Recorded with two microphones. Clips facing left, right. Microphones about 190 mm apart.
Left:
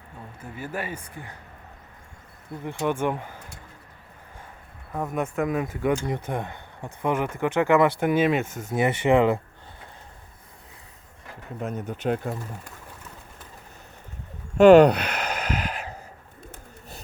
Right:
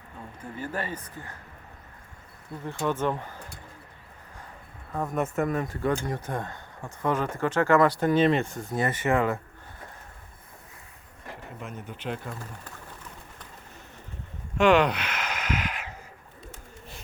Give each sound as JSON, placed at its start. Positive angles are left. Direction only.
{"t": 0.4, "sound": "speech", "side_deg": 10}
{"t": 2.6, "sound": "speech", "side_deg": 15}
{"t": 4.9, "sound": "speech", "side_deg": 0}
{"t": 5.6, "sound": "speech", "side_deg": 15}
{"t": 8.4, "sound": "speech", "side_deg": 20}
{"t": 11.6, "sound": "speech", "side_deg": 40}
{"t": 14.6, "sound": "a sound", "side_deg": 40}